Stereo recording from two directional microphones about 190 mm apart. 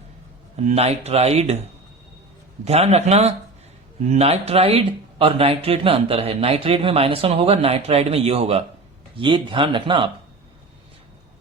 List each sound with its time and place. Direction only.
0.5 s speech: 35° right (ahead or behind)
2.6 s speech: 35° right (ahead or behind)